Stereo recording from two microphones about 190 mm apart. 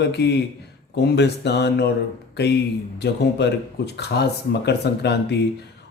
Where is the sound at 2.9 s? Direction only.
60° left (ahead or behind).